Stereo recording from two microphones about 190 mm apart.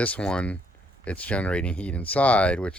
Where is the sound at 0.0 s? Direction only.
5° left (ahead or behind).